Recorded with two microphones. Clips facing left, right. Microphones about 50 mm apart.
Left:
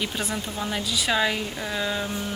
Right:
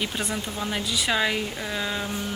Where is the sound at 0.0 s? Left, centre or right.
Centre.